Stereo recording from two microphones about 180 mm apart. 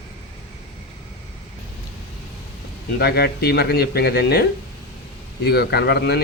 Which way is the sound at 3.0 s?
60° left (ahead or behind).